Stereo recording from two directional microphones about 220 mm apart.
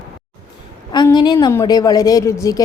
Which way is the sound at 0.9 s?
20° left (ahead or behind).